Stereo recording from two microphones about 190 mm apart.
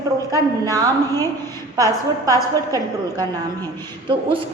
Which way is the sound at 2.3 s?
20° right (ahead or behind).